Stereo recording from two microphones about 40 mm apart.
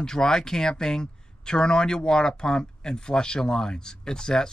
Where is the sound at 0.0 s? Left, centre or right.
Centre.